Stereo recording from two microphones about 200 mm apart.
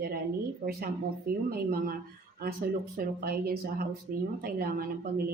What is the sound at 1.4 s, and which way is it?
Speech, 50° right (ahead or behind).